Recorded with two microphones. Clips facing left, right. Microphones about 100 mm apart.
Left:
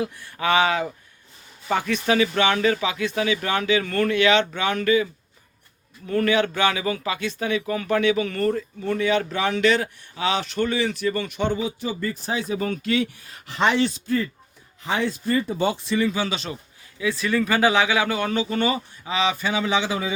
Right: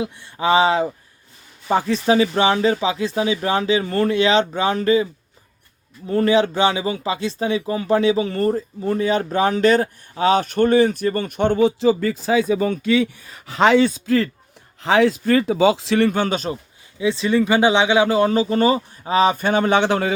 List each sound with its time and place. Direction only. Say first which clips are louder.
0.0 s speech: right 3 dB; 25° right (ahead or behind)
6.1 s speech: right 4 dB; 30° right (ahead or behind); by 12.1 s 90° right
14.8 s speech: right 9 dB; 90° right; by 16.5 s 50° right (ahead or behind)
17.0 s speech: right 5 dB; 25° right (ahead or behind); by 20.1 s 70° right (ahead or behind)